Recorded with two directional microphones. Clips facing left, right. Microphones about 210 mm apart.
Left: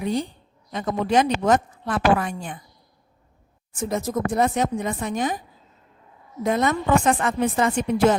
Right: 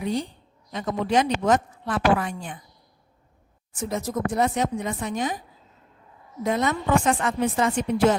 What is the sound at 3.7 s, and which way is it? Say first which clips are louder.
A woman's voice: left 3 dB; 50° left (ahead or behind).